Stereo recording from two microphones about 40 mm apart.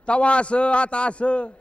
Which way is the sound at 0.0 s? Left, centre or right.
Left.